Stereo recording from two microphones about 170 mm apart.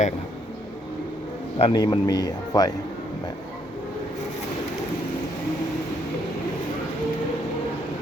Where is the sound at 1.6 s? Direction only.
30° left (ahead or behind).